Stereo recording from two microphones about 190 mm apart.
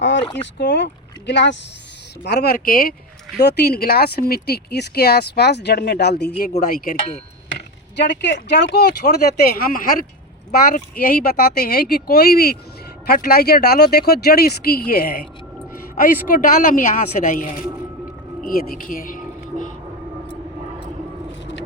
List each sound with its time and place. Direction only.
0.0 s speech: 65° left (ahead or behind)
2.2 s speech: 60° left (ahead or behind)
6.7 s speech: 50° left (ahead or behind)
7.9 s speech: 65° left (ahead or behind)
16.3 s speech: 45° left (ahead or behind)
18.8 s a sound: 45° left (ahead or behind)